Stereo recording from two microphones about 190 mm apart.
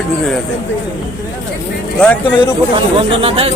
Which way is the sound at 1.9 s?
5° left (ahead or behind).